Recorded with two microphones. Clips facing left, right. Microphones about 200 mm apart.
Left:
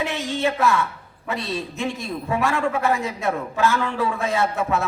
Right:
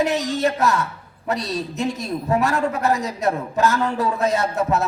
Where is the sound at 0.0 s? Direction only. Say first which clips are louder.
Right 4 dB; 40° right (ahead or behind).